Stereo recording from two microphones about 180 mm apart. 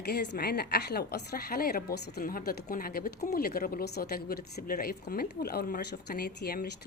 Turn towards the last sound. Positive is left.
turn(degrees=60)  # may be behind; listen again after turning